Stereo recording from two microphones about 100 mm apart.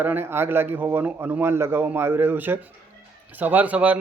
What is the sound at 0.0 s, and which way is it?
A man's voice, 20° right (ahead or behind).